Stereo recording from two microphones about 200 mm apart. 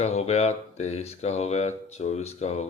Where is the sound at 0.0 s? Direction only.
35° left (ahead or behind).